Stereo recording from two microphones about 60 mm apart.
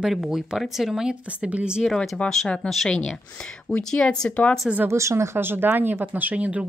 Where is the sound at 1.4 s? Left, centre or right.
Centre.